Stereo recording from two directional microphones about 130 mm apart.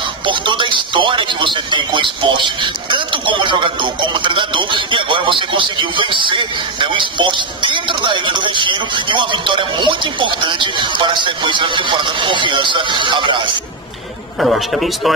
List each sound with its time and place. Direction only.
0.3 s speech: 40° right (ahead or behind)
14.4 s a man's voice: centre (ahead or behind)